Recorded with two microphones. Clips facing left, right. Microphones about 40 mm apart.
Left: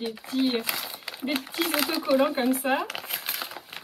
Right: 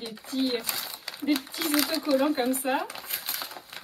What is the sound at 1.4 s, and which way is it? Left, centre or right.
Speech, left.